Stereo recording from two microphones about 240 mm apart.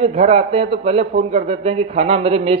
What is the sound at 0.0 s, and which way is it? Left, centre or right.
Speech, right.